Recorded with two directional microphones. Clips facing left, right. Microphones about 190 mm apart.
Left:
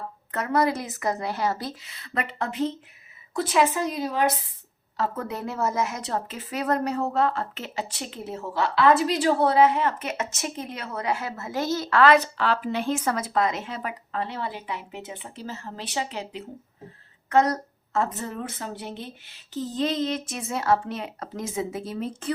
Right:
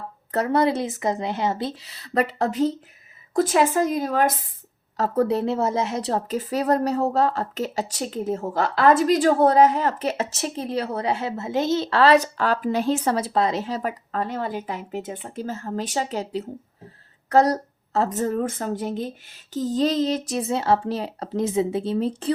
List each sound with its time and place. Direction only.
0.3 s speech: 35° right (ahead or behind)
1.9 s a woman's voice: 35° right (ahead or behind)